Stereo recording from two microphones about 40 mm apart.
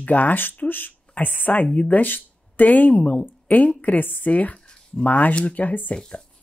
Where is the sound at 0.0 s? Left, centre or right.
Left.